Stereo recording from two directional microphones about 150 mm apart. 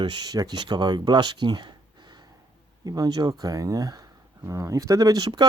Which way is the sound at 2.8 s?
25° right (ahead or behind).